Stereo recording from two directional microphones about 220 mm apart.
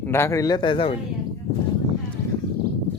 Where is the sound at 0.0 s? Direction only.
10° left (ahead or behind).